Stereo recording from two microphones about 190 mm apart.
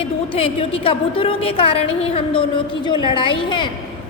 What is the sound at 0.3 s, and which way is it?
A woman's voice, 30° left (ahead or behind).